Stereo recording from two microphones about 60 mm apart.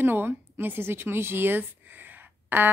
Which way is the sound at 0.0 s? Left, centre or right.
Right.